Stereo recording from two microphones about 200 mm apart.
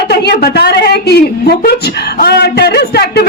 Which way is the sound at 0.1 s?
55° left (ahead or behind).